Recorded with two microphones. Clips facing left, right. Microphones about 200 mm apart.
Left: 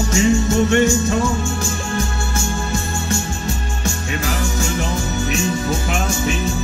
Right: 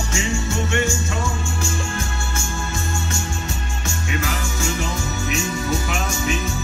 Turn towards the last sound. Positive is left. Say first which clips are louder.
# left 3 dB
turn(degrees=35)  # may be behind; listen again after turning